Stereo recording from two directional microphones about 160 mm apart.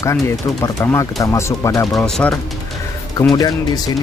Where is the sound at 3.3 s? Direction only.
25° left (ahead or behind).